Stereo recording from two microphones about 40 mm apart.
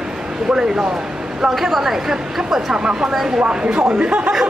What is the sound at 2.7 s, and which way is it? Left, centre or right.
Speech, right.